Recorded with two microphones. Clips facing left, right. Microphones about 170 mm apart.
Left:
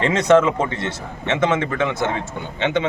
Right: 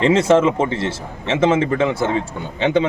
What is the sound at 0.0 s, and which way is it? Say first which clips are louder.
Speech: right 1 dB; 30° right (ahead or behind).